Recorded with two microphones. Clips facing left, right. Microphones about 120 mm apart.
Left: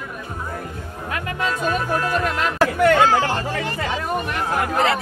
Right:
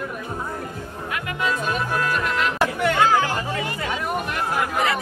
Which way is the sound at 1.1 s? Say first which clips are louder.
Left 1 dB; 40° left (ahead or behind).